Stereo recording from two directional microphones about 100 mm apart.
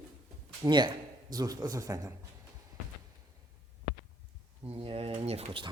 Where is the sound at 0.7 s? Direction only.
50° right (ahead or behind).